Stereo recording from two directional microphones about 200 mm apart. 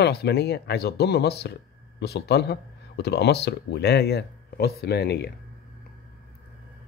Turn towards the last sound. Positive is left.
turn(degrees=55)  # may be behind; listen again after turning